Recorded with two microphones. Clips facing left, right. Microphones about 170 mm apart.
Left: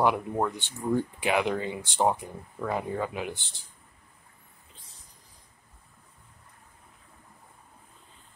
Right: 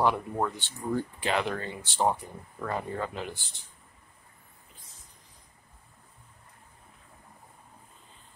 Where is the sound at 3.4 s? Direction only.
30° left (ahead or behind).